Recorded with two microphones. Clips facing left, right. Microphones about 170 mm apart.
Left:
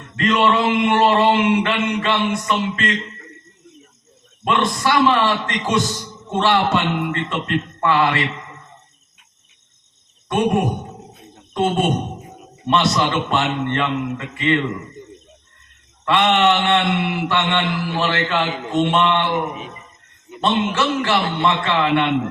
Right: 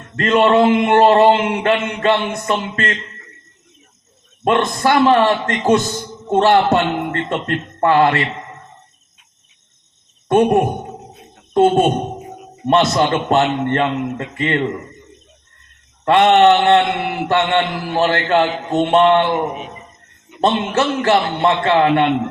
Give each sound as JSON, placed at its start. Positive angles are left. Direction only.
{"t": 0.2, "sound": "mantra", "side_deg": -45}
{"t": 4.4, "sound": "mantra", "side_deg": -45}
{"t": 10.2, "sound": "mantra", "side_deg": -45}
{"t": 12.6, "sound": "mantra", "side_deg": -45}
{"t": 16.0, "sound": "mantra", "side_deg": -45}